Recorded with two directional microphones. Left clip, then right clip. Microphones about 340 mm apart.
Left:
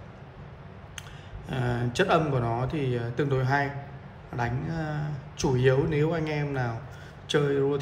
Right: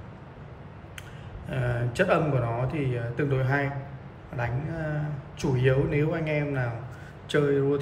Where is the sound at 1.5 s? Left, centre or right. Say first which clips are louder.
Even; centre.